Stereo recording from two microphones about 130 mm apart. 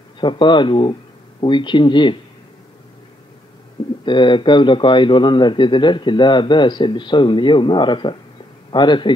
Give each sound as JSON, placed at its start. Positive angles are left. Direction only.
{"t": 0.2, "sound": "speech", "side_deg": 40}
{"t": 4.0, "sound": "speech", "side_deg": 40}